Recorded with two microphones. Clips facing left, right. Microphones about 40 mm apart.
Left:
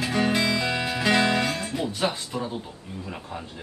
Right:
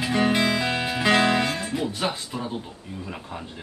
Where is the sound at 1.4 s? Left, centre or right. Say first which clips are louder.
Right 1 dB; centre.